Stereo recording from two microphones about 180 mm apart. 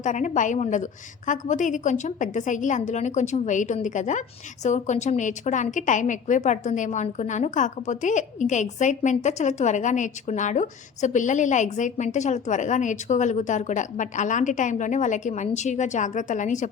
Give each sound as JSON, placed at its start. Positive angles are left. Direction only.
{"t": 0.0, "sound": "a woman's voice", "side_deg": 45}